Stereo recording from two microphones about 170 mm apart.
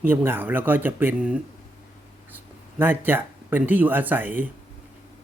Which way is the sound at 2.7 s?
10° right (ahead or behind).